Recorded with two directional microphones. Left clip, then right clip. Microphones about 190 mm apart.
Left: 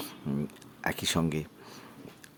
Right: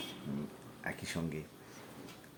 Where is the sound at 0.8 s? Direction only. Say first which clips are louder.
Left 10 dB; 35° left (ahead or behind).